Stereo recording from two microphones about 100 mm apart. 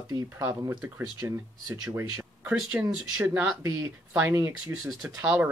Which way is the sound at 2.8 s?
20° right (ahead or behind).